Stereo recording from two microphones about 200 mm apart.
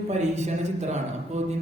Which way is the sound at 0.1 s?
35° right (ahead or behind).